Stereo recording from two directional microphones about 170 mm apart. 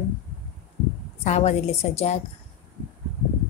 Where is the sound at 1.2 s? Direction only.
40° left (ahead or behind).